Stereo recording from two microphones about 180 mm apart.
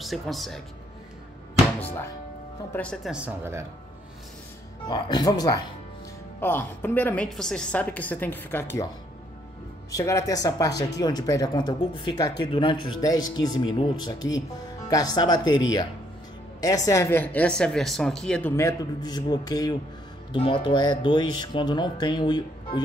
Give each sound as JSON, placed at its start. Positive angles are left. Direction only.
{"t": 0.0, "sound": "speech", "side_deg": 0}
{"t": 2.7, "sound": "speech", "side_deg": 5}
{"t": 4.8, "sound": "speech", "side_deg": 25}
{"t": 6.4, "sound": "a woman's voice", "side_deg": 10}
{"t": 9.8, "sound": "speech", "side_deg": 15}
{"t": 16.6, "sound": "a woman's voice", "side_deg": 20}
{"t": 18.6, "sound": "speech", "side_deg": 20}